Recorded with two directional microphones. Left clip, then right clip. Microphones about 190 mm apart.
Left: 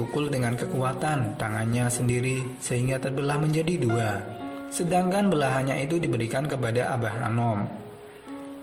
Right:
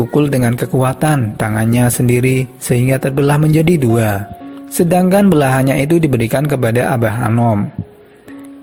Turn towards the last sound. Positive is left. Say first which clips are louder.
# right 12 dB
turn(degrees=-40)  # may be behind; listen again after turning